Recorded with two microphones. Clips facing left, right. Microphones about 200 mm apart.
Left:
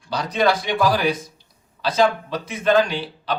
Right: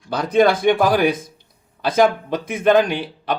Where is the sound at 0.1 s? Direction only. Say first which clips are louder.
Right 5 dB; 50° right (ahead or behind).